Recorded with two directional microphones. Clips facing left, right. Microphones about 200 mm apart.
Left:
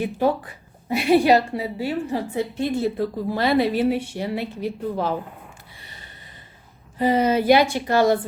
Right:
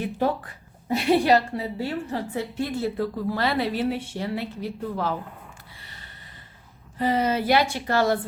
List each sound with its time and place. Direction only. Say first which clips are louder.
0.9 s a woman's voice: left 3 dB; 10° left (ahead or behind)
5.8 s a sound: left 2 dB; 15° left (ahead or behind)
7.0 s a woman's voice: left 4 dB; 15° left (ahead or behind)